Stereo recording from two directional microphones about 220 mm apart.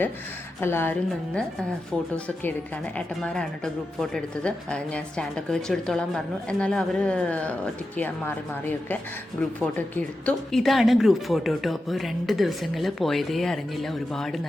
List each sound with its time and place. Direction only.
0.6 s speech: 10° left (ahead or behind)
9.6 s speech: 5° left (ahead or behind)